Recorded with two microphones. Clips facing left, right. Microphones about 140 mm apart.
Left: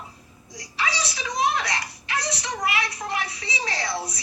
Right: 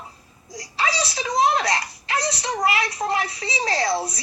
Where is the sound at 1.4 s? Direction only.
30° right (ahead or behind).